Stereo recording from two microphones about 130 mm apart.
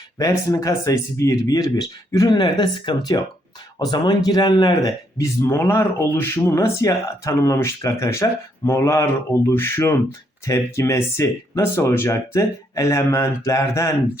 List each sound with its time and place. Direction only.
0.2 s speech: 25° left (ahead or behind)